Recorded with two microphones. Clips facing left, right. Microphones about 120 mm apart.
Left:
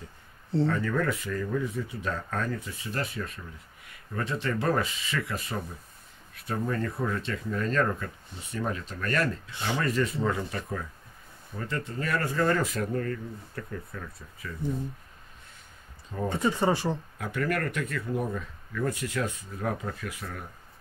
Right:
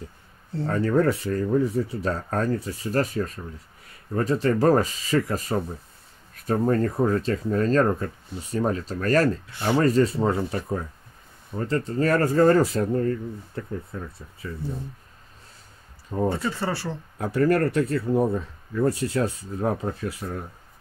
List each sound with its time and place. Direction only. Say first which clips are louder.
0.7 s speech: right 6 dB; 30° right (ahead or behind)
16.3 s speech: left 4 dB; 20° left (ahead or behind)
17.2 s speech: right 11 dB; 35° right (ahead or behind)